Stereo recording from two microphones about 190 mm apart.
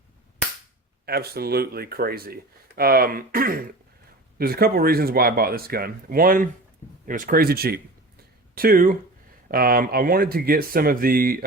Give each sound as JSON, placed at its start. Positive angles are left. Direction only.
{"t": 1.0, "sound": "speech", "side_deg": -55}